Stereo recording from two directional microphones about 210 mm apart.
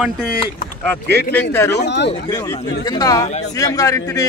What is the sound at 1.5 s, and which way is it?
Speech, 10° left (ahead or behind).